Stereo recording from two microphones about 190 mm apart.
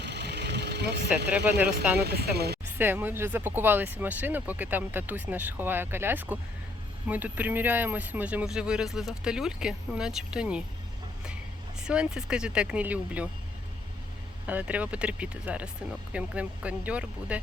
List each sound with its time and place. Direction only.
0.0 s vehicle: 65° right (ahead or behind)
1.5 s speech: 10° right (ahead or behind)
2.0 s speech: 55° right (ahead or behind)
2.6 s speech: 10° right (ahead or behind)
11.8 s speech: 5° right (ahead or behind)
14.4 s speech: 10° right (ahead or behind)